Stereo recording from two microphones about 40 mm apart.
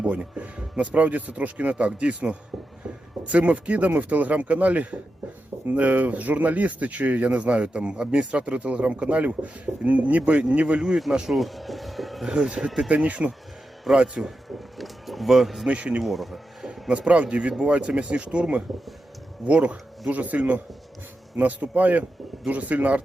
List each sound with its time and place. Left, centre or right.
0.1 s speech: right
10.8 s speech: centre
11.3 s a sound: centre
12.2 s speech: right
12.9 s speech: right
14.8 s a sound: centre
15.7 s speech: right
16.0 s a sound: centre
17.1 s speech: right